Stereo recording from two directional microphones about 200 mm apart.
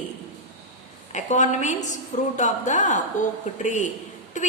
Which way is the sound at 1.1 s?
35° left (ahead or behind).